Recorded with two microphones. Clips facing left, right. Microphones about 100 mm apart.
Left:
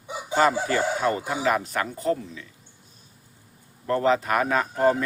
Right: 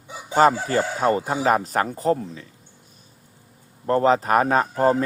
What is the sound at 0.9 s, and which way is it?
Speech, 35° right (ahead or behind).